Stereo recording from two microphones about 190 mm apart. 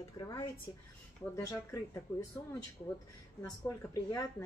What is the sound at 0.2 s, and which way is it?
Speech, 20° left (ahead or behind).